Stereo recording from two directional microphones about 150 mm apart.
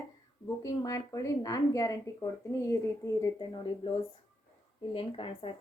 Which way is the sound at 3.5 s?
35° left (ahead or behind).